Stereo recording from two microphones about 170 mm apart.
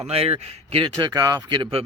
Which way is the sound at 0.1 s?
35° right (ahead or behind).